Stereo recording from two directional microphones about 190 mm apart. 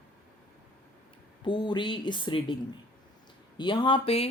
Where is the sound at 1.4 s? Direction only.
25° left (ahead or behind).